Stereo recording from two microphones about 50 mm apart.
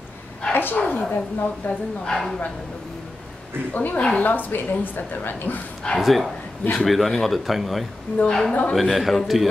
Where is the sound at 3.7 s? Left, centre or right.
Left.